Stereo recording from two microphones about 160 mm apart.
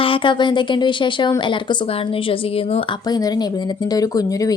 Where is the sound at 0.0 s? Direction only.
35° left (ahead or behind).